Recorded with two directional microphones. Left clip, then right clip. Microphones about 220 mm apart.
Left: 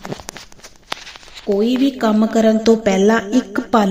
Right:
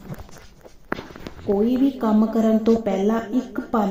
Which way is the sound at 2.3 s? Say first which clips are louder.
Left 8 dB; 15° left (ahead or behind).